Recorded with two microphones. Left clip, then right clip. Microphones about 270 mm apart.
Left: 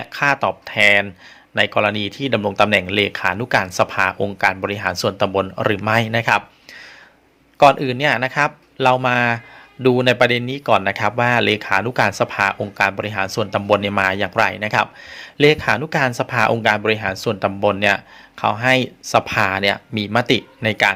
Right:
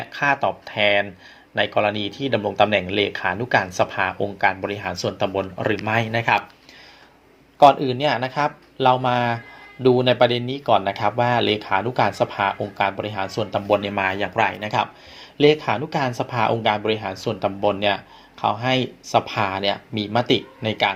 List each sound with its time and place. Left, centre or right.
0.0 s speech: left
7.6 s speech: left